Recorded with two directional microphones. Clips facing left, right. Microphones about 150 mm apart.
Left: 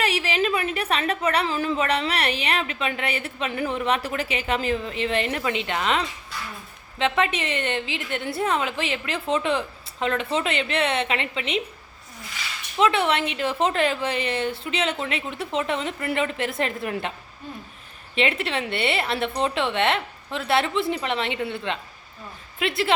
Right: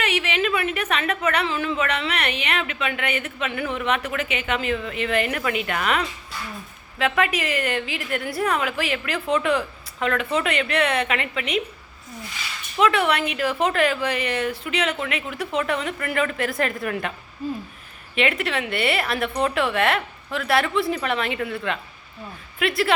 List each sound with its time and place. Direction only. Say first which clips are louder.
0.0 s a woman's voice: even; 35° left (ahead or behind)
12.8 s a woman's voice: right 1 dB; 30° left (ahead or behind)
18.1 s a woman's voice: right 1 dB; 30° left (ahead or behind)